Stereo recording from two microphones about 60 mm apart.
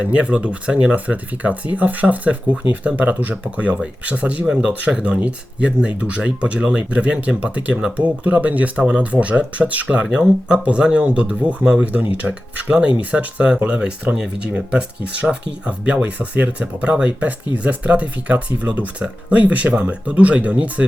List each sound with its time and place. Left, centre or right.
0.0 s speech: right